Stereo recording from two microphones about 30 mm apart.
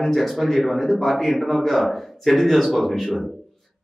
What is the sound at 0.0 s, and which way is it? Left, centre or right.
A man's voice, centre.